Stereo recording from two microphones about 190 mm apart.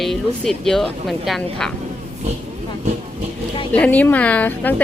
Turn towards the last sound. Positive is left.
turn(degrees=10)  # may be behind; listen again after turning